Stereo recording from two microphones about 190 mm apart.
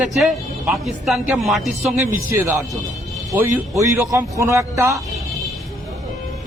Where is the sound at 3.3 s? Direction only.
15° right (ahead or behind).